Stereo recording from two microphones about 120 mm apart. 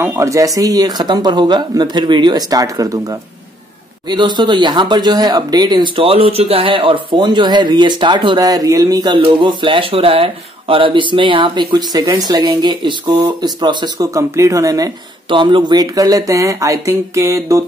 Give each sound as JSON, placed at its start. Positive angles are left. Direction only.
{"t": 0.0, "sound": "speech", "side_deg": -20}
{"t": 4.1, "sound": "speech", "side_deg": -40}
{"t": 14.1, "sound": "speech", "side_deg": -25}
{"t": 15.2, "sound": "speech", "side_deg": -45}